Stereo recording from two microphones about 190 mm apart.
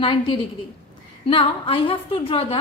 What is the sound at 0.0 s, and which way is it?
A woman's voice, 25° left (ahead or behind).